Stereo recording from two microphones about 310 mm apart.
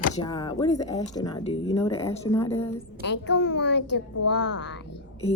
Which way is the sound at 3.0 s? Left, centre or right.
Left.